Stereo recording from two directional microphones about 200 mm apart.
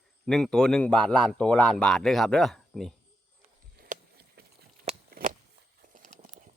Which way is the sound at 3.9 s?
40° right (ahead or behind).